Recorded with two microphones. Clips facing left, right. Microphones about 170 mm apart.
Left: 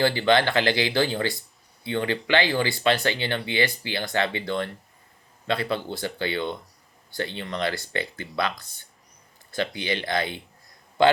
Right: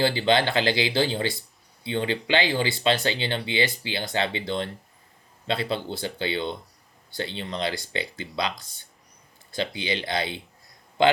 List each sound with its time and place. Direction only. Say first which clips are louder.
0.0 s speech: left 1 dB; 20° right (ahead or behind)
7.8 s speech: left 1 dB; 50° left (ahead or behind)
8.2 s speech: left 1 dB; 20° right (ahead or behind)
9.7 s speech: left 1 dB; 50° left (ahead or behind)